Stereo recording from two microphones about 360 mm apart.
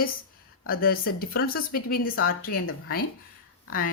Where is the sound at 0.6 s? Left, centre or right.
Left.